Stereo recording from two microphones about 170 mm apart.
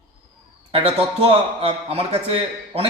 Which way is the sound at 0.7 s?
35° right (ahead or behind).